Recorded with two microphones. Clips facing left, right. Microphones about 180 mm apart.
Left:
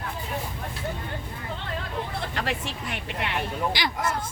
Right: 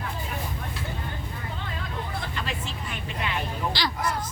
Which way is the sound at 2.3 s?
70° left (ahead or behind).